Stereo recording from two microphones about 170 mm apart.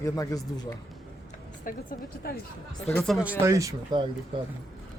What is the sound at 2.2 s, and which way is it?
Speech, 60° left (ahead or behind).